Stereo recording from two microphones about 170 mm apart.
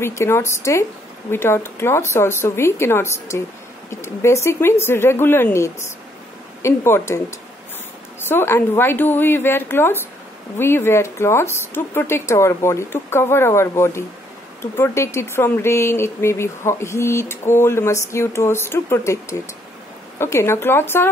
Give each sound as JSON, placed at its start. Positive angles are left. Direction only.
{"t": 0.0, "sound": "speech", "side_deg": 15}